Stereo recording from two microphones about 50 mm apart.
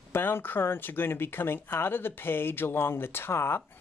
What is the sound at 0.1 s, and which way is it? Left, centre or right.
Speech, left.